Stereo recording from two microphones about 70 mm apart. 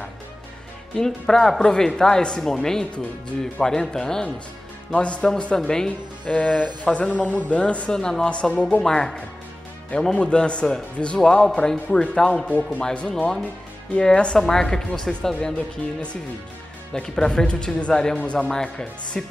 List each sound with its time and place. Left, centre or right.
0.9 s speech: centre
6.2 s speech: centre
16.9 s speech: centre